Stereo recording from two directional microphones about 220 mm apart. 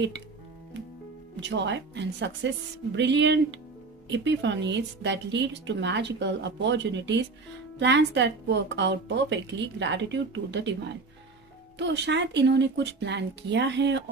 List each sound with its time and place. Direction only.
1.3 s a woman's voice: 50° right (ahead or behind)
11.8 s a woman's voice: 50° right (ahead or behind)